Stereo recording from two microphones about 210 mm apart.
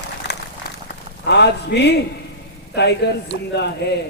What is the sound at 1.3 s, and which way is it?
A man's voice, 55° left (ahead or behind).